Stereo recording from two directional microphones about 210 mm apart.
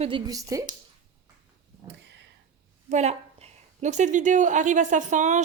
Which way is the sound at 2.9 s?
30° right (ahead or behind).